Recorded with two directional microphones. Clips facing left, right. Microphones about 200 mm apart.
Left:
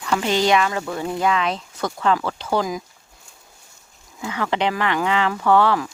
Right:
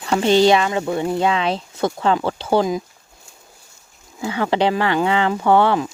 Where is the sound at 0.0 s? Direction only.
30° right (ahead or behind).